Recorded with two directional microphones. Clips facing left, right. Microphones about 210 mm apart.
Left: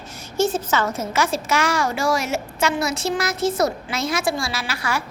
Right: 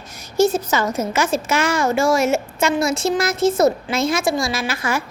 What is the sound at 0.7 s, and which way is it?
A woman's voice, 15° right (ahead or behind).